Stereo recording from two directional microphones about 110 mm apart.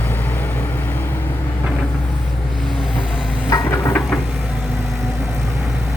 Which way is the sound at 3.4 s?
30° left (ahead or behind).